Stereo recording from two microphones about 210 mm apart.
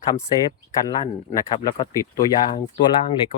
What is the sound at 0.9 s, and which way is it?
Speech, 20° left (ahead or behind).